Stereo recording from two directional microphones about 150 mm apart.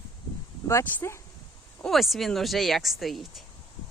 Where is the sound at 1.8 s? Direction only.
Centre (ahead or behind).